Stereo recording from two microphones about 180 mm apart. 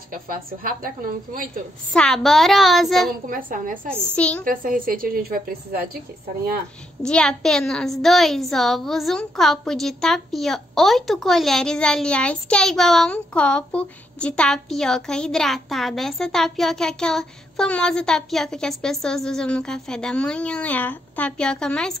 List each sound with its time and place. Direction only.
0.1 s a woman's voice: 50° right (ahead or behind)
2.0 s a child's voice: centre (ahead or behind)
3.1 s a woman's voice: 50° right (ahead or behind)
4.1 s a woman's voice: 5° left (ahead or behind)
4.5 s a woman's voice: 50° right (ahead or behind)
7.0 s a child's voice: 5° left (ahead or behind)